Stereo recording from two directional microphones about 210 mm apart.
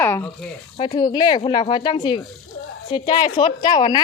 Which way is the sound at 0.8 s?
20° left (ahead or behind).